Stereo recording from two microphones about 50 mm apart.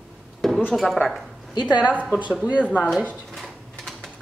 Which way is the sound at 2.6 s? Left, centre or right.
Left.